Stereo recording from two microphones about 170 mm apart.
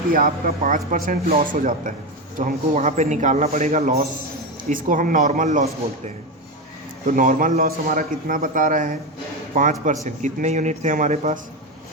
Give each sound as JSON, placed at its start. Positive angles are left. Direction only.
{"t": 0.1, "sound": "a man's voice", "side_deg": -55}
{"t": 4.7, "sound": "a man's voice", "side_deg": -50}
{"t": 7.1, "sound": "a man's voice", "side_deg": -55}